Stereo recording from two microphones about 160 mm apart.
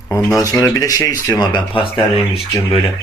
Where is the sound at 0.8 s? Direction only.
20° left (ahead or behind).